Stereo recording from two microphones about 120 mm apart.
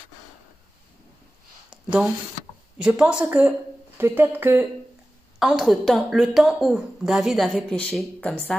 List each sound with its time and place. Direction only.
1.7 s a sound: 10° right (ahead or behind)
2.8 s speech: 10° right (ahead or behind)
5.4 s a woman's voice: 5° right (ahead or behind)